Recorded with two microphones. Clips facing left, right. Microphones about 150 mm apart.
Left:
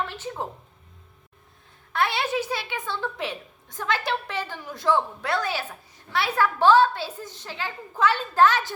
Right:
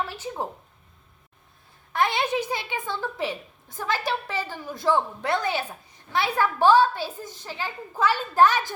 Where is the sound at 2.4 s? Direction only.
15° right (ahead or behind).